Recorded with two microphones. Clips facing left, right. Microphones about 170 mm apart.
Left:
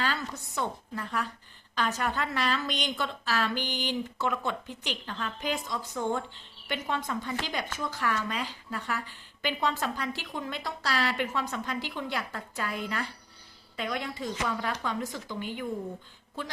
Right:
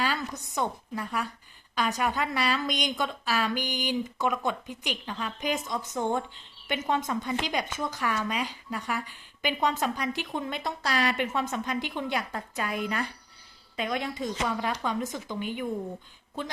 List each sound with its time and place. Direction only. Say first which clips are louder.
0.0 s a woman's voice: right 2 dB; 10° right (ahead or behind)